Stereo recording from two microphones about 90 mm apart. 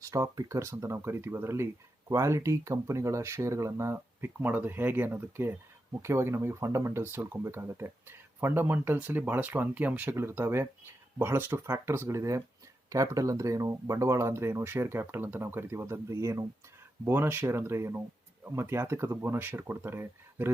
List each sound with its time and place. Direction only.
0.0 s speech: 40° right (ahead or behind)
17.1 s speech: 25° right (ahead or behind)